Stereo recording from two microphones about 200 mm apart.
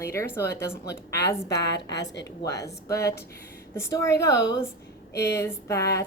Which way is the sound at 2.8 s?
15° left (ahead or behind).